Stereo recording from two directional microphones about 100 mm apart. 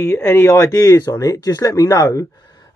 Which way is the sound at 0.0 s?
30° left (ahead or behind).